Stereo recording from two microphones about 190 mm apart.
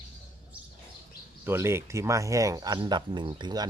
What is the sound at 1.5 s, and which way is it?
Speech, 15° right (ahead or behind).